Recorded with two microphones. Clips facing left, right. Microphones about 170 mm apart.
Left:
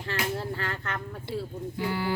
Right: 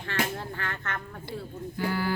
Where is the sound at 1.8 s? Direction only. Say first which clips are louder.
Right 1 dB; 25° left (ahead or behind).